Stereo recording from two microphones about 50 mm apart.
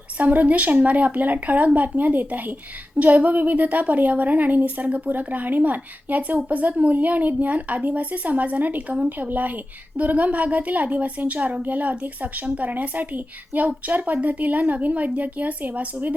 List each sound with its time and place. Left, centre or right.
0.2 s a woman's voice: right